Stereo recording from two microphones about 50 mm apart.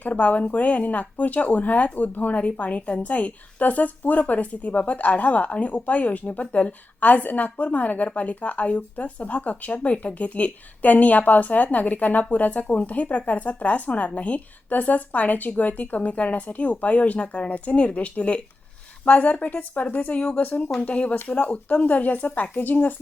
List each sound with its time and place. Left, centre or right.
0.0 s speech: left